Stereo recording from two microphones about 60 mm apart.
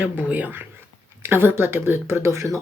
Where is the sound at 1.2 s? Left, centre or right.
Right.